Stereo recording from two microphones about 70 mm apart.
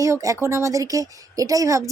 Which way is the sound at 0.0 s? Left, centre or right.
Right.